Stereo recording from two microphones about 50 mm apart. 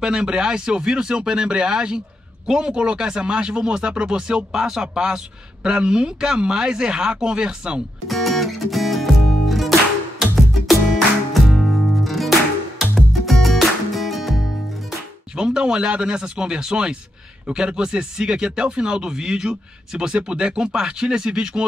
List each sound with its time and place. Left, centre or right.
0.0 s speech: centre
8.1 s music: centre
15.3 s speech: centre